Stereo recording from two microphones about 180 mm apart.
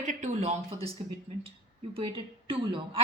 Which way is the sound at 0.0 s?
40° right (ahead or behind).